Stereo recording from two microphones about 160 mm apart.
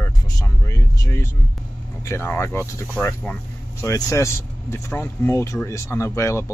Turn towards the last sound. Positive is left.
turn(degrees=15)  # may be behind; listen again after turning